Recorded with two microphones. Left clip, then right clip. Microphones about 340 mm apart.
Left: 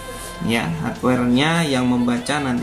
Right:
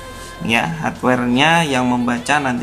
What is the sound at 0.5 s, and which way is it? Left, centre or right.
Speech, right.